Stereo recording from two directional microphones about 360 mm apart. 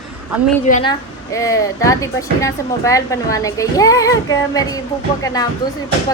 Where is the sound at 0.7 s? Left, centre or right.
Centre.